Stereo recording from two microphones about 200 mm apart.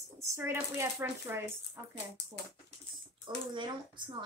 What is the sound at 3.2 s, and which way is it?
Speech, 25° right (ahead or behind).